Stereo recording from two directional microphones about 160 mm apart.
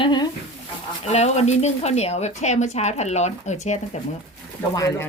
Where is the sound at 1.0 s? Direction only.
40° left (ahead or behind).